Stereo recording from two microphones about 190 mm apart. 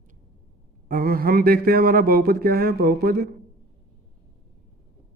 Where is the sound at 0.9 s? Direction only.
50° right (ahead or behind).